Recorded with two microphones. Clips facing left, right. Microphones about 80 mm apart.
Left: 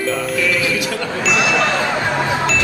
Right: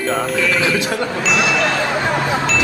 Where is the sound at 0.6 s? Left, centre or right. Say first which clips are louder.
Right 2 dB; right.